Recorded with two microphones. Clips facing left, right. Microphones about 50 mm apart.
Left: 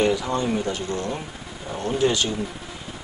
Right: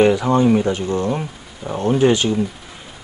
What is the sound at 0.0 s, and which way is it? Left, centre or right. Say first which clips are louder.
Speech: right 8 dB; right.